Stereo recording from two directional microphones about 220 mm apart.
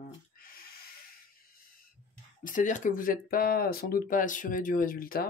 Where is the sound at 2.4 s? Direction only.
35° left (ahead or behind).